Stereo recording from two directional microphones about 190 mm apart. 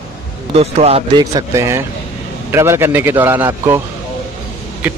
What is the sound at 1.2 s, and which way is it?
A man's voice, 15° right (ahead or behind).